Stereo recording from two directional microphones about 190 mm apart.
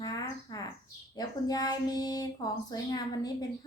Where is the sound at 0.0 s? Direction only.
20° left (ahead or behind).